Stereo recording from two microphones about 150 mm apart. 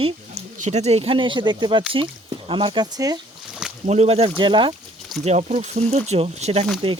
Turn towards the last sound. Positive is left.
turn(degrees=-40)  # may be behind; listen again after turning